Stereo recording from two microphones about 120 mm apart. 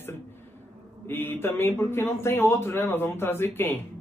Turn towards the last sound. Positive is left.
turn(degrees=20)  # may be behind; listen again after turning